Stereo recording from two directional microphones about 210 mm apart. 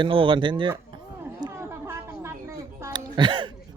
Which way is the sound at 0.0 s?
25° right (ahead or behind).